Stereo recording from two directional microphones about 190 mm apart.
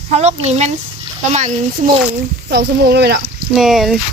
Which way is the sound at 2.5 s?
60° right (ahead or behind).